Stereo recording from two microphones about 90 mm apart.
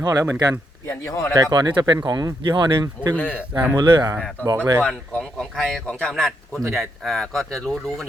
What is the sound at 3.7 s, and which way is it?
Speech, 50° right (ahead or behind).